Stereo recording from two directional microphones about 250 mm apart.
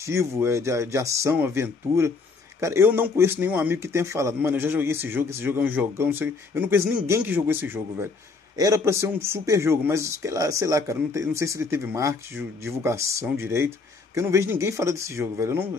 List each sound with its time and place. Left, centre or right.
0.0 s speech: centre